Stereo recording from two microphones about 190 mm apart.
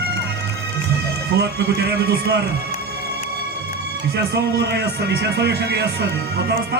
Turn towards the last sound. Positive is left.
turn(degrees=-60)  # may be behind; listen again after turning